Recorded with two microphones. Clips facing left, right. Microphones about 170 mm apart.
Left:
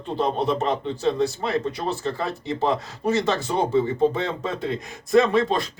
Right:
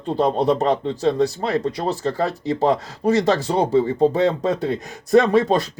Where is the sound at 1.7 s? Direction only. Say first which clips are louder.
Right 4 dB; 35° right (ahead or behind).